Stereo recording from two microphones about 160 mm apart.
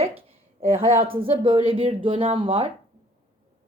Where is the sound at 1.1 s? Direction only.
35° right (ahead or behind).